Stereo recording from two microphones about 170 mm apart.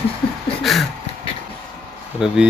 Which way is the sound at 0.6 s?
Centre (ahead or behind).